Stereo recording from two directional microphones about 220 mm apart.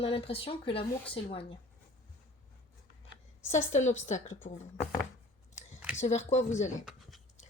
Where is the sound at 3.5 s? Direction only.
30° left (ahead or behind).